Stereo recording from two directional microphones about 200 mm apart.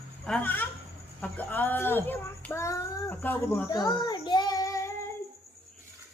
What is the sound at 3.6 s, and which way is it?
Child singing, 20° left (ahead or behind).